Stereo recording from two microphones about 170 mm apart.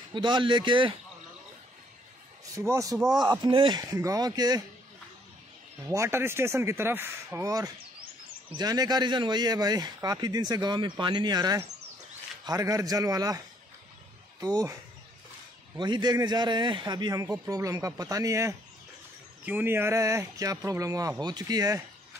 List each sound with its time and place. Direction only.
0.1 s speech: 30° right (ahead or behind)
2.5 s speech: 20° right (ahead or behind)
5.9 s speech: 15° right (ahead or behind)
14.4 s speech: 20° right (ahead or behind)
15.8 s speech: 25° right (ahead or behind)